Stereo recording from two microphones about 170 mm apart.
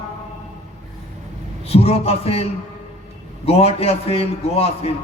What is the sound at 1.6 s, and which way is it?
A man's voice, 35° left (ahead or behind).